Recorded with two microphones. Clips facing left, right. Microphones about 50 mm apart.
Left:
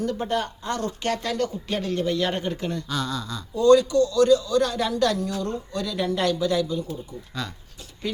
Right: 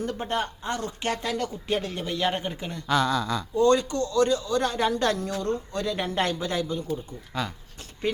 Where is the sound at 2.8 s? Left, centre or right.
Right.